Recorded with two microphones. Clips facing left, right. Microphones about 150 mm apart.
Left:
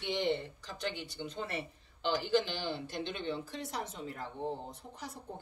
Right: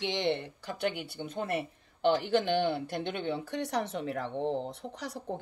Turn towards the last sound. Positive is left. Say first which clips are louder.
# right 7 dB
turn(degrees=-85)